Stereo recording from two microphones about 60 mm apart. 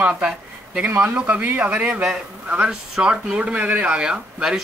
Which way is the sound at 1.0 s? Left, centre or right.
Right.